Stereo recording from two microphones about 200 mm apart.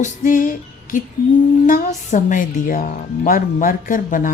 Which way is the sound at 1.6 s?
40° left (ahead or behind).